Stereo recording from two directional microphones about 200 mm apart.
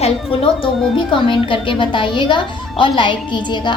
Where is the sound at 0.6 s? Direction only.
25° left (ahead or behind).